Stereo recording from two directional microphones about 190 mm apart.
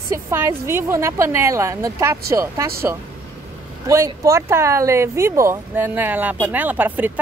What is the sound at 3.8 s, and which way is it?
Speech, 15° right (ahead or behind).